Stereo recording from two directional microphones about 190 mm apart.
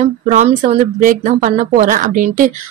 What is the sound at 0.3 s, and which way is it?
Speech, 40° right (ahead or behind).